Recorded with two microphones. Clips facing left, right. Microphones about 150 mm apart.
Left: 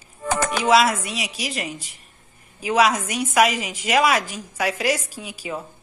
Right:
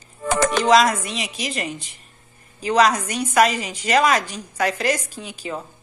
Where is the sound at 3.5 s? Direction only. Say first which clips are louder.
Right 1 dB; 40° right (ahead or behind).